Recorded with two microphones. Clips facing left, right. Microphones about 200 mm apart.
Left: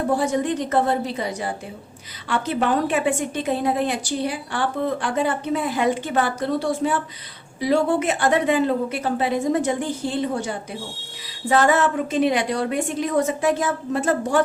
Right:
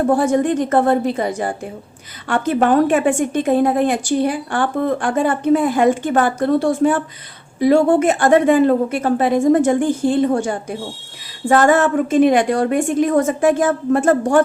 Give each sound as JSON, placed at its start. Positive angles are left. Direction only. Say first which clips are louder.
{"t": 0.2, "sound": "a woman's voice", "louder": "right 6 dB", "side_deg": -50}